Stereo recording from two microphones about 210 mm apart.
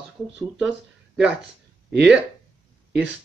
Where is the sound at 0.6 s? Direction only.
5° right (ahead or behind).